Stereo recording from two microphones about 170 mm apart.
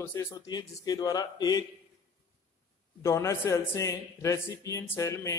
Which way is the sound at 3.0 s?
15° left (ahead or behind).